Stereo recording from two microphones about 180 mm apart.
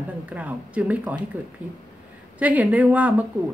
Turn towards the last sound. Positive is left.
turn(degrees=-10)  # may be behind; listen again after turning